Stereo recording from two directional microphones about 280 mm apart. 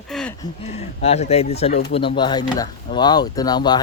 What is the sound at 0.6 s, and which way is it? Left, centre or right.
Speech, left.